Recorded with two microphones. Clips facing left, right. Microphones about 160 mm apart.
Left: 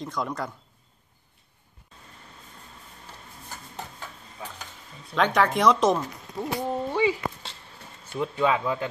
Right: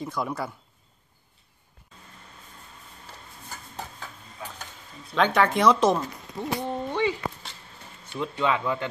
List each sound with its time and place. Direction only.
0.0 s speech: 5° right (ahead or behind)
5.1 s speech: centre (ahead or behind)
8.2 s speech: 5° left (ahead or behind)